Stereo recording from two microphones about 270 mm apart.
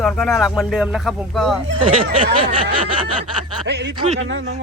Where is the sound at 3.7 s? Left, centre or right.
Right.